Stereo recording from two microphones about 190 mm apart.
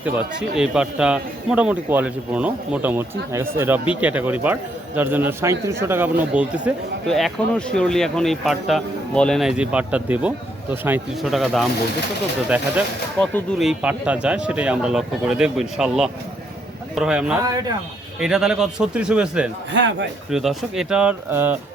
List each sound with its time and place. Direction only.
0.0 s a man's voice: 10° right (ahead or behind)
13.1 s a man's voice: 5° left (ahead or behind)
19.7 s a man's voice: 70° right (ahead or behind)
20.3 s a man's voice: centre (ahead or behind)